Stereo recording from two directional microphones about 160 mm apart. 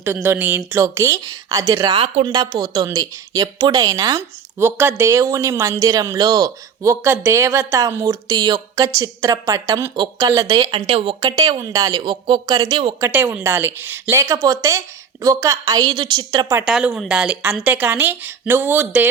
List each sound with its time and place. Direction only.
0.0 s a woman's voice: 10° right (ahead or behind)
10.8 s a woman's voice: 35° right (ahead or behind)
13.1 s a woman's voice: 15° right (ahead or behind); by 16.5 s 30° right (ahead or behind)
16.6 s speech: 5° right (ahead or behind)